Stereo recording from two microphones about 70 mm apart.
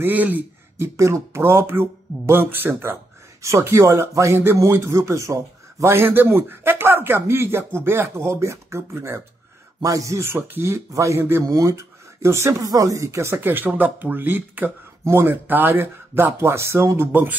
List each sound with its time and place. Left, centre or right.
0.0 s speech: right
0.7 s speech: right
3.4 s speech: right
5.9 s speech: right
9.8 s speech: right
10.9 s speech: right
11.1 s speech: right
11.4 s speech: right
13.4 s speech: right
17.1 s speech: right